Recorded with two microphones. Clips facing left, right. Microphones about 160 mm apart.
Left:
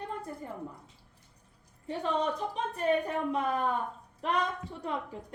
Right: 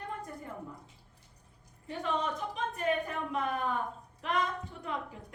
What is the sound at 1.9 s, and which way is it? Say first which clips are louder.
Speech: left 3 dB; 35° left (ahead or behind).